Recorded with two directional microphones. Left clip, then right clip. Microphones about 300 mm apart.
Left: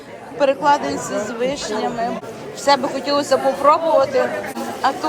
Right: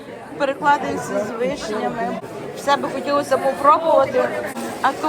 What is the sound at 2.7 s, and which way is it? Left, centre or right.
Speech, centre.